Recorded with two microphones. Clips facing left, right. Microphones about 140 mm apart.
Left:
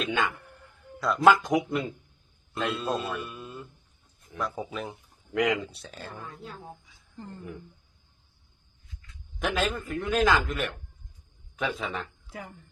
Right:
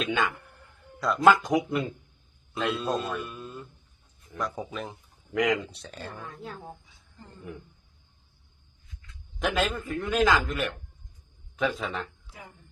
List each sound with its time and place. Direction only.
0.0 s a man's voice: centre (ahead or behind)
9.4 s speech: centre (ahead or behind)
12.3 s speech: 70° left (ahead or behind)